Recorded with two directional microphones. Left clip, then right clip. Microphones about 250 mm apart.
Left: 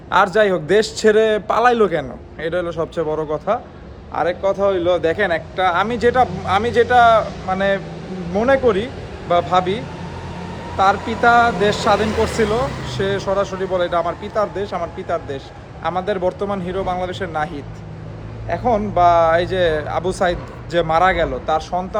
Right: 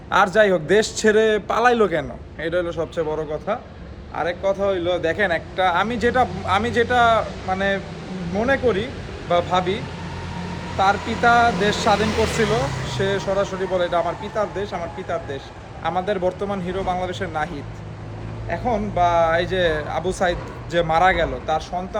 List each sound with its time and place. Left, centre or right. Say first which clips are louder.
0.1 s speech: left 1 dB; centre